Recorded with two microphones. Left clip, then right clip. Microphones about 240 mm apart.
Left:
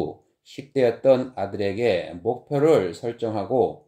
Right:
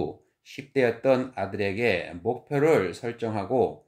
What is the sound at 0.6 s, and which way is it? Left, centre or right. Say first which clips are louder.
Speech: left 3 dB; centre.